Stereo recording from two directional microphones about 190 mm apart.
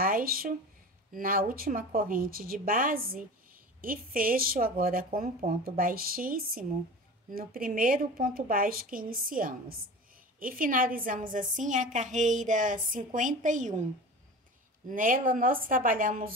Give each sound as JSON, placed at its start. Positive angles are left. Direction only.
{"t": 0.0, "sound": "speech", "side_deg": -50}
{"t": 14.9, "sound": "speech", "side_deg": -45}